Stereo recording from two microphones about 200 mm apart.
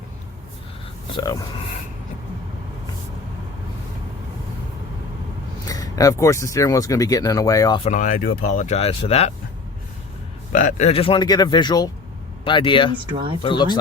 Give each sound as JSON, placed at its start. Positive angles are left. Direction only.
{"t": 1.1, "sound": "speech", "side_deg": 15}
{"t": 5.6, "sound": "speech", "side_deg": 15}
{"t": 7.9, "sound": "speech", "side_deg": 40}
{"t": 10.5, "sound": "speech", "side_deg": 40}
{"t": 13.1, "sound": "speech", "side_deg": -25}
{"t": 13.4, "sound": "speech", "side_deg": 25}